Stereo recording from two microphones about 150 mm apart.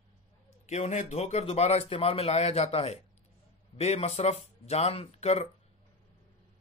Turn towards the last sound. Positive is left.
turn(degrees=45)  # may be behind; listen again after turning